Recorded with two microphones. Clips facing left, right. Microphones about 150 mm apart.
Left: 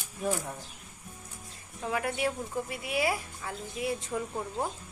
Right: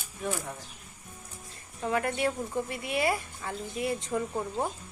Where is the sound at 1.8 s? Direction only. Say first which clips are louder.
Right 2 dB; 5° left (ahead or behind).